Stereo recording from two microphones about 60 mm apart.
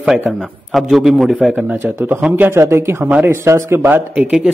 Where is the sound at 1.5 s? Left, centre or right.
Right.